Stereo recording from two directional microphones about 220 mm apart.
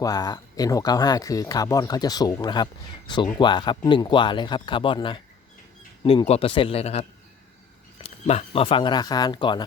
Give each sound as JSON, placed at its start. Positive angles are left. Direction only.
{"t": 0.0, "sound": "speech", "side_deg": 15}
{"t": 8.0, "sound": "speech", "side_deg": 30}